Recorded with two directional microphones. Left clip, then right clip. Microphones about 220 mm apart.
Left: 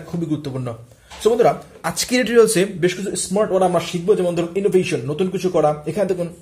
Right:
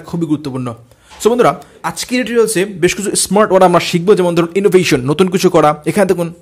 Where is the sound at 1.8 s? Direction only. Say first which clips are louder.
Right 2 dB; 5° right (ahead or behind).